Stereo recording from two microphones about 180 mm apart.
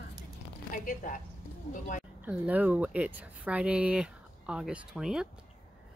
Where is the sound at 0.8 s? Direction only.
50° left (ahead or behind).